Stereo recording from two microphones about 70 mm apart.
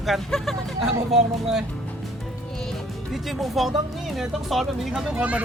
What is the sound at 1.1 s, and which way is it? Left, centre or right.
Speech, centre.